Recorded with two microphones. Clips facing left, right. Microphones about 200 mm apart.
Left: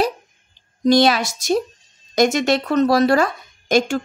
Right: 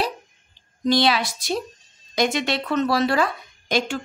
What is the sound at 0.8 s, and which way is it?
A woman's voice, 45° left (ahead or behind).